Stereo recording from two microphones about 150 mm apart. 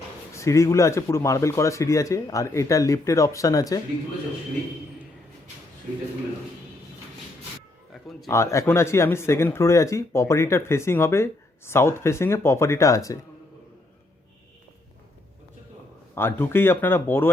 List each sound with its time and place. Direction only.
0.3 s speech: 20° left (ahead or behind)
7.9 s a sound: centre (ahead or behind)
8.3 s speech: 20° left (ahead or behind)
16.1 s speech: 15° left (ahead or behind)